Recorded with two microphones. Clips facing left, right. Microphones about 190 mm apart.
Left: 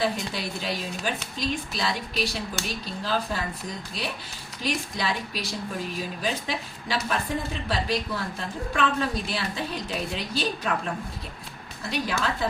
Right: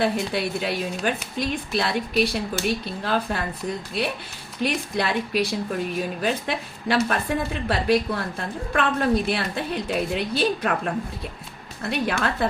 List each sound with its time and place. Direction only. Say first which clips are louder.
0.0 s a woman's voice: right 5 dB; 60° right (ahead or behind)
11.8 s a woman's voice: right 4 dB; 60° right (ahead or behind)